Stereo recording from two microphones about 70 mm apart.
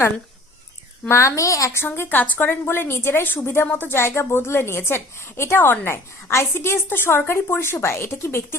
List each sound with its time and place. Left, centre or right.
1.0 s a woman's voice: left
1.8 s a woman's voice: left